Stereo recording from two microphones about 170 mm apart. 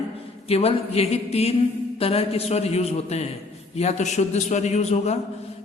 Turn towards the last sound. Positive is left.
turn(degrees=40)  # may be behind; listen again after turning